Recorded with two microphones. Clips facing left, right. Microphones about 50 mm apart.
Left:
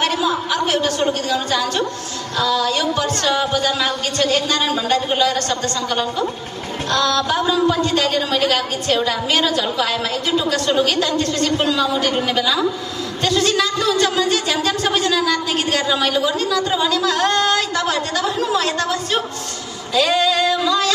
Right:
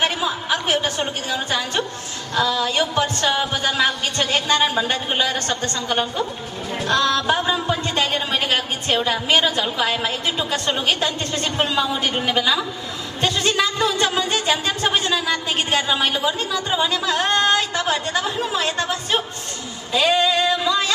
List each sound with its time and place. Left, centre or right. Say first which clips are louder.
0.0 s a woman's voice: left 3 dB; right